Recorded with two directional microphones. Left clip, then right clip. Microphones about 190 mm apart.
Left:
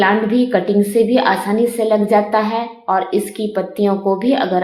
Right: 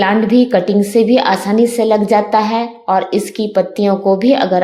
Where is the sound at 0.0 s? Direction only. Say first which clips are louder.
Right 2 dB; 40° right (ahead or behind).